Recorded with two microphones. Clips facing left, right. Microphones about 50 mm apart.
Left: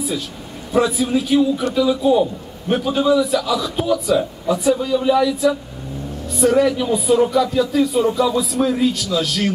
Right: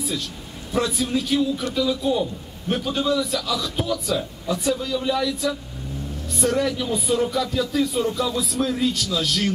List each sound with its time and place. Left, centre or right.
0.7 s speech: centre